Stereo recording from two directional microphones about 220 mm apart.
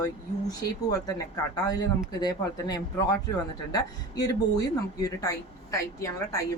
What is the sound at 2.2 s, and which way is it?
Speech, 20° left (ahead or behind).